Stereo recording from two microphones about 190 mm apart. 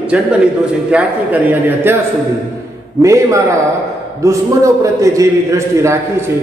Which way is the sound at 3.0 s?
15° right (ahead or behind).